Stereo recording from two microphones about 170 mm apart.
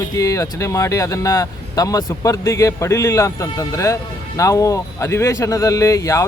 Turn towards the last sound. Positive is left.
turn(degrees=20)  # may be behind; listen again after turning